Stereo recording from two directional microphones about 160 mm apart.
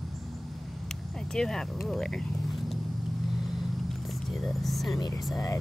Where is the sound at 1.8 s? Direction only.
5° left (ahead or behind).